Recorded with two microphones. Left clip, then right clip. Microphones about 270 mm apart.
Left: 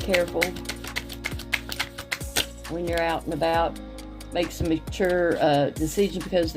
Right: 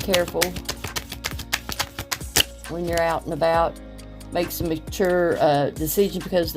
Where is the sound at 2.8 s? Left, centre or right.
Right.